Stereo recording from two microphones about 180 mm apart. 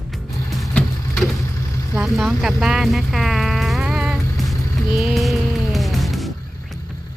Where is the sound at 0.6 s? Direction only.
Centre (ahead or behind).